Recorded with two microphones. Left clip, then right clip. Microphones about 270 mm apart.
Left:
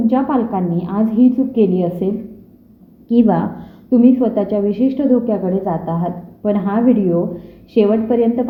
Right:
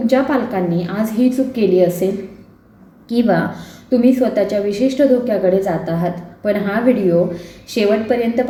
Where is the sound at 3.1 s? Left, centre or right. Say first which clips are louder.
Left 1 dB; left.